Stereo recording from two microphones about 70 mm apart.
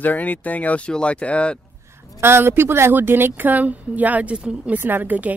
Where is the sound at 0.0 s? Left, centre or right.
Left.